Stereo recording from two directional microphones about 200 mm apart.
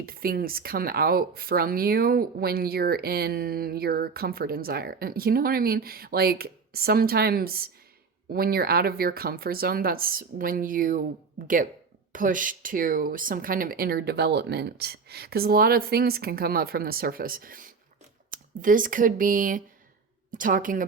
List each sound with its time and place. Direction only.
0.0 s speech: 50° right (ahead or behind)